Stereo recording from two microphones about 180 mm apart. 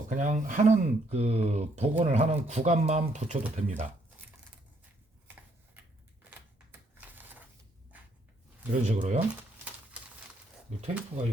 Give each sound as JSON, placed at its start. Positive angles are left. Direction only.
{"t": 0.1, "sound": "speech", "side_deg": -45}
{"t": 8.7, "sound": "speech", "side_deg": -40}